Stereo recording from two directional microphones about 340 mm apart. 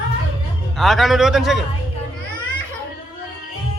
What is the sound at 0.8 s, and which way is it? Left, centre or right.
Speech, centre.